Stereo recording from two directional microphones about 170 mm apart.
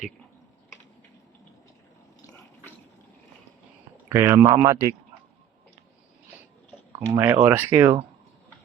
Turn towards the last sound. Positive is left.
turn(degrees=-15)  # may be behind; listen again after turning